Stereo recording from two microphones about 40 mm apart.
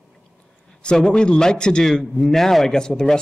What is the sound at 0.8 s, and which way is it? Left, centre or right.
Speech, left.